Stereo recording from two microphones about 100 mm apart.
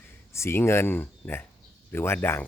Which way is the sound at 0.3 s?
25° left (ahead or behind).